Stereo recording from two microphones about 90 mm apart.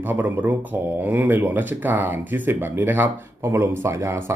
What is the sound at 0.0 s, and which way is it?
Speech, 20° right (ahead or behind).